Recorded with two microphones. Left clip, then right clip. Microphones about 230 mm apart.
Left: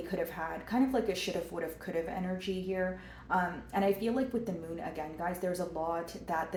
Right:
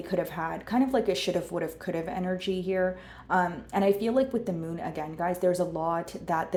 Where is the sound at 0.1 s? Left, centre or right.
Right.